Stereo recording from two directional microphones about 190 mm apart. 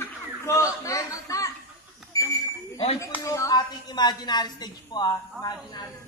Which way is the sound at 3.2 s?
15° left (ahead or behind).